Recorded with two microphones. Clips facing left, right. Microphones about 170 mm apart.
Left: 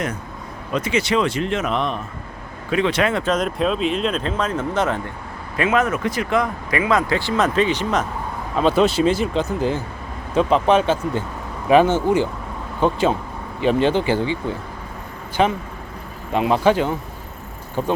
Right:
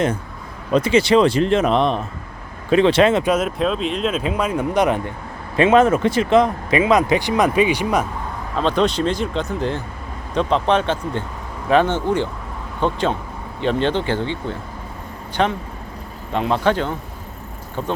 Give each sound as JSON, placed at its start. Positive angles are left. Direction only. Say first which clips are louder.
{"t": 0.7, "sound": "speech", "louder": "right 6 dB", "side_deg": -35}
{"t": 3.2, "sound": "speech", "louder": "right 1 dB", "side_deg": -5}
{"t": 5.5, "sound": "speech", "louder": "right 6 dB", "side_deg": -30}
{"t": 8.5, "sound": "speech", "louder": "left 2 dB", "side_deg": 5}
{"t": 15.4, "sound": "speech", "louder": "left 1 dB", "side_deg": 5}